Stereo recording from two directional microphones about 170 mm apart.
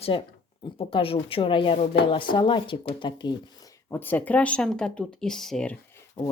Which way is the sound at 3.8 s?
10° left (ahead or behind).